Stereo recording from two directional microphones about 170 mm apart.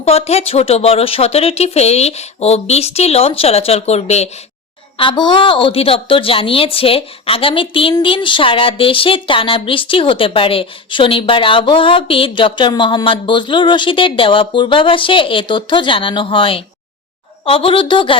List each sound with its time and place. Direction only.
0.0 s a woman's voice: 35° left (ahead or behind)
4.9 s a woman's voice: 30° left (ahead or behind)